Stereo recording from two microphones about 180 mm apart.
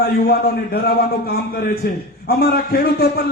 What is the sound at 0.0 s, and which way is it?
A man's voice, 60° left (ahead or behind).